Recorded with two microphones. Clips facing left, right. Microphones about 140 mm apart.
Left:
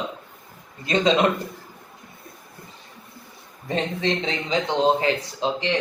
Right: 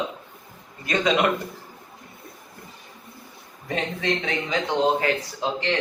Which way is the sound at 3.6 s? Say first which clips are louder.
Left 2 dB; 30° left (ahead or behind).